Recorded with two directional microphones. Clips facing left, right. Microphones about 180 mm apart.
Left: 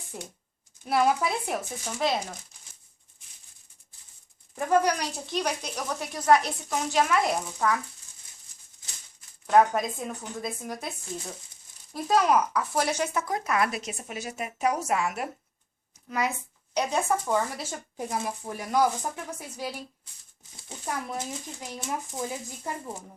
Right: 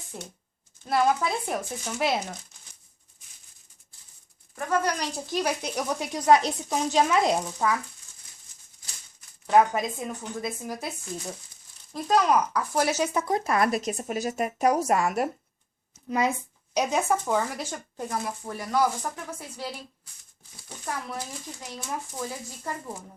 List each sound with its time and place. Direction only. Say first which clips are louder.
0.1 s speech: even; 5° left (ahead or behind)
4.5 s speech: left 3 dB; 15° left (ahead or behind)
5.2 s speech: right 3 dB; 5° right (ahead or behind); by 7.3 s 20° right (ahead or behind)
9.5 s speech: even; 5° right (ahead or behind)
12.0 s speech: even; 5° left (ahead or behind)
13.1 s speech: right 3 dB; 25° right (ahead or behind)
16.0 s speech: right 4 dB; 25° right (ahead or behind)
16.7 s a child's voice: right 2 dB; 5° right (ahead or behind); by 23.0 s 20° left (ahead or behind)